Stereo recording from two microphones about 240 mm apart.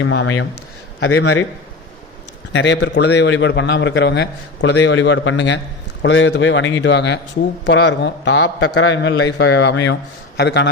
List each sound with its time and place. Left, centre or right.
0.0 s a man's voice: left
2.5 s a man's voice: left